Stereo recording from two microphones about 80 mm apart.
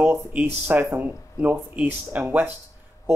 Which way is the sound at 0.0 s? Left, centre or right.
Centre.